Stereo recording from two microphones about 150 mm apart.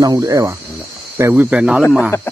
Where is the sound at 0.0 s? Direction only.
20° right (ahead or behind); by 1.8 s 5° right (ahead or behind).